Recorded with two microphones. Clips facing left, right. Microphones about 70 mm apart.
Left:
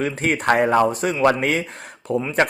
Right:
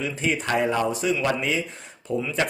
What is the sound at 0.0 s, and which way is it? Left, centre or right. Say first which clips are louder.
A man's voice: left 5 dB; left.